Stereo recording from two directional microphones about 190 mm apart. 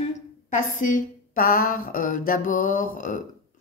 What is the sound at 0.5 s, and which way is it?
A woman's voice, 40° left (ahead or behind).